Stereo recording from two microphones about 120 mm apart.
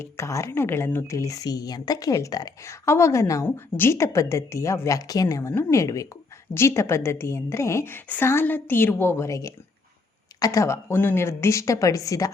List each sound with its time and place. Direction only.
0.0 s speech: 25° left (ahead or behind)